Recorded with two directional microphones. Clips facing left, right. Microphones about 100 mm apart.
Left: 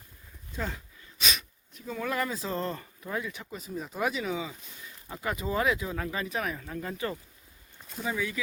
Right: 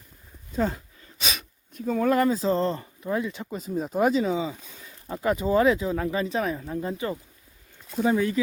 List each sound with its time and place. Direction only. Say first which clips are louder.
0.5 s speech: right 9 dB; 35° right (ahead or behind)
1.7 s speech: right 10 dB; 50° right (ahead or behind); by 7.2 s 20° right (ahead or behind)
8.0 s speech: right 9 dB; 45° right (ahead or behind)